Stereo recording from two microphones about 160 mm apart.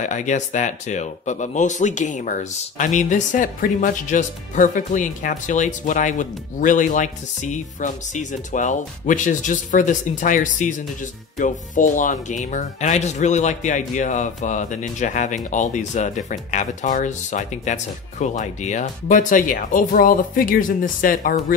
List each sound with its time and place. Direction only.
0.0 s speech: 50° left (ahead or behind)